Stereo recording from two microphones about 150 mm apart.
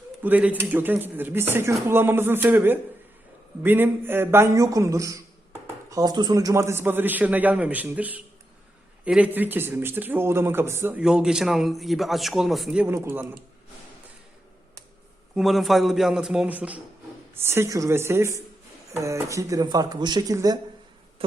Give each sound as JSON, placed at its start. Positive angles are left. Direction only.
{"t": 0.2, "sound": "speech", "side_deg": -10}
{"t": 12.9, "sound": "speech", "side_deg": -15}
{"t": 15.4, "sound": "a man's voice", "side_deg": 0}
{"t": 21.2, "sound": "insect", "side_deg": -35}